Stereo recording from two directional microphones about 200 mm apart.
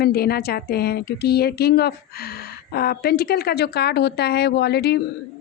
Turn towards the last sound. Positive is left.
turn(degrees=55)  # may be behind; listen again after turning